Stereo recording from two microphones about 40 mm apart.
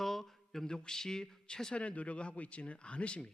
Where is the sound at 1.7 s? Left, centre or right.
Left.